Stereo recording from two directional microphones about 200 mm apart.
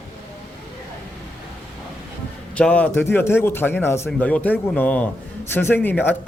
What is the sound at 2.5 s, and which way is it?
Speech, 5° left (ahead or behind).